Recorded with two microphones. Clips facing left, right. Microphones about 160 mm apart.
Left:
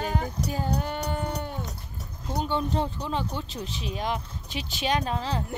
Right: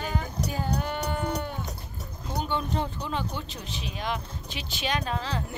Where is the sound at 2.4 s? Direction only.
30° left (ahead or behind).